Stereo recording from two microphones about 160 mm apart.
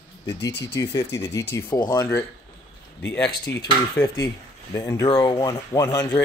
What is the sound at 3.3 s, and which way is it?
Speech, 90° left.